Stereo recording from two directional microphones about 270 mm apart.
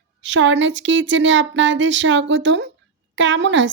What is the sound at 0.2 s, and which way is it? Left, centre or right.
Speech, right.